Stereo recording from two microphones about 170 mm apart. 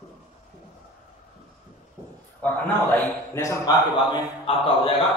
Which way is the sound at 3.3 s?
20° left (ahead or behind).